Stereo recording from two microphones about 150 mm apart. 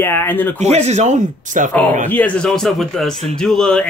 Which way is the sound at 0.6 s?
50° right (ahead or behind).